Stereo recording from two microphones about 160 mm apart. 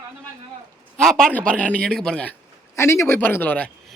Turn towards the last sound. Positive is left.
turn(degrees=10)  # may be behind; listen again after turning